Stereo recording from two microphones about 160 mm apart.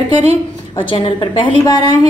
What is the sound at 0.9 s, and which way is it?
A woman's voice, 30° left (ahead or behind).